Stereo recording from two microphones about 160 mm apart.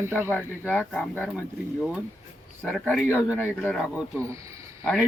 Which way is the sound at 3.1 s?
15° left (ahead or behind).